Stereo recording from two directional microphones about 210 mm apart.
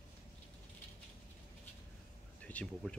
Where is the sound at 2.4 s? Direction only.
5° left (ahead or behind).